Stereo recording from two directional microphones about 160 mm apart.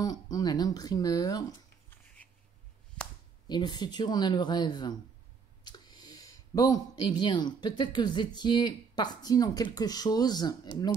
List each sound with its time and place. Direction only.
0.0 s speech: 25° left (ahead or behind)
3.4 s speech: 25° left (ahead or behind)